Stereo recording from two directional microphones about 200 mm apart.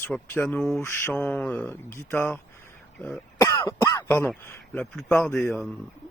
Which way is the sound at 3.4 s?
15° left (ahead or behind).